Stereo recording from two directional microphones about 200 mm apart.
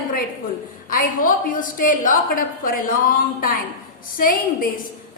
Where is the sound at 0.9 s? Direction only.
45° left (ahead or behind).